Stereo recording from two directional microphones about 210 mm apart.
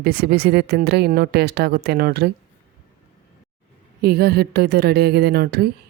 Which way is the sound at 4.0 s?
50° right (ahead or behind).